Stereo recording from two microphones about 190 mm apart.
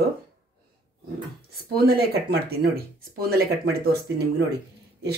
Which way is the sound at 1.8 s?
55° right (ahead or behind).